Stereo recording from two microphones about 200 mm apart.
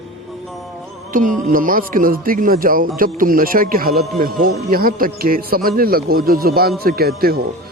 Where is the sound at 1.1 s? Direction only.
45° right (ahead or behind).